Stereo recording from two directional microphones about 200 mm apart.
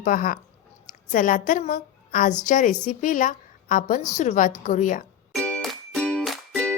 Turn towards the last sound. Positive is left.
turn(degrees=5)  # may be behind; listen again after turning